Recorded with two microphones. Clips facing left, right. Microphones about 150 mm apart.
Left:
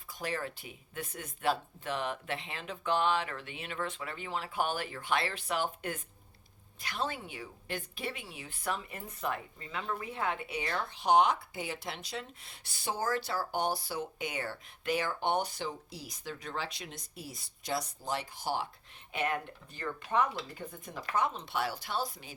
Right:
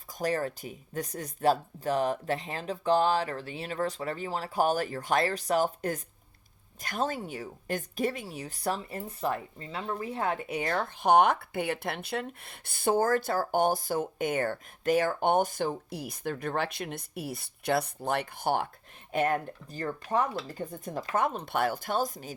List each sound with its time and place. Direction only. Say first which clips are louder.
0.1 s a woman's voice: right 7 dB; 40° right (ahead or behind); by 18.7 s 55° right (ahead or behind)
19.1 s a woman's voice: right 6 dB; 45° right (ahead or behind)